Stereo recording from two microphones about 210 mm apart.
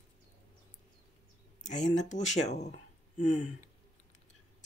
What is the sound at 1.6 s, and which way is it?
Speech, 35° left (ahead or behind).